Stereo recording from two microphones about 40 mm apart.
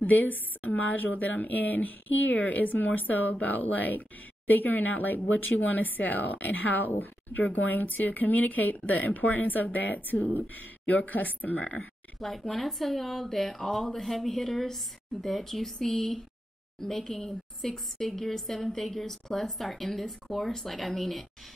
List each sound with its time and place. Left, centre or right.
0.0 s speech: left
12.2 s a woman's voice: centre